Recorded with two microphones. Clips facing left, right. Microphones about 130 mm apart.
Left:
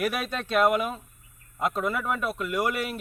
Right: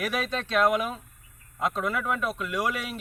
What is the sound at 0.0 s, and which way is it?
A man's voice, 5° left (ahead or behind).